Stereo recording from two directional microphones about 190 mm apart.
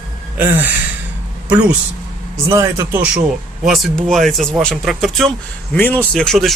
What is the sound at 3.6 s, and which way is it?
Speech, centre (ahead or behind).